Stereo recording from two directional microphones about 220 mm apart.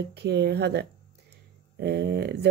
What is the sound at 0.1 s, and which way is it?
Speech, 50° right (ahead or behind).